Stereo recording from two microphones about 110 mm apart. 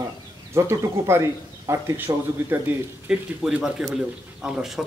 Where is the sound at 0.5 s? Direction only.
25° right (ahead or behind).